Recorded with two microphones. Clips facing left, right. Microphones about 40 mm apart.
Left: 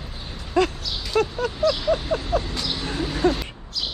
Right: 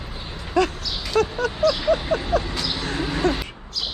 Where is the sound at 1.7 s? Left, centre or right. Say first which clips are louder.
Right 2 dB; centre.